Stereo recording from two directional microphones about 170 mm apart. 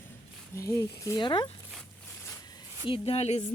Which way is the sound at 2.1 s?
20° left (ahead or behind).